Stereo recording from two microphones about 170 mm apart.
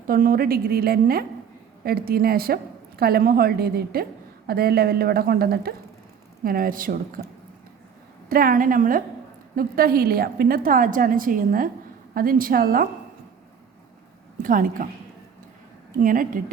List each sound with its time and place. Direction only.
0.1 s a woman's voice: 60° right (ahead or behind)
14.4 s a woman's voice: 55° right (ahead or behind)
16.0 s a woman's voice: 55° right (ahead or behind)